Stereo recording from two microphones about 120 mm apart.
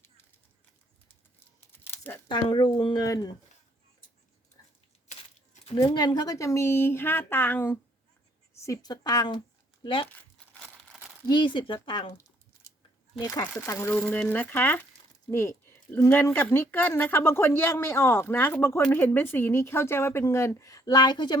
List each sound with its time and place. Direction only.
1.7 s a sound: 20° left (ahead or behind)
2.3 s speech: 40° left (ahead or behind)
5.9 s speech: 40° left (ahead or behind); by 7.8 s 15° left (ahead or behind)
8.6 s speech: 30° left (ahead or behind)
9.8 s speech: 45° left (ahead or behind)
10.1 s crumpling: 10° left (ahead or behind)
11.3 s speech: 40° left (ahead or behind)
13.1 s speech: 30° left (ahead or behind)
13.9 s speech: 10° left (ahead or behind); by 21.3 s 40° left (ahead or behind)